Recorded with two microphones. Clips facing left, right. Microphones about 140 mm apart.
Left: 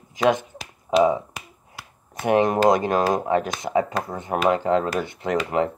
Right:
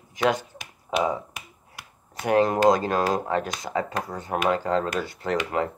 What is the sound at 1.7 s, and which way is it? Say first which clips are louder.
Speech: left 3 dB; 20° left (ahead or behind).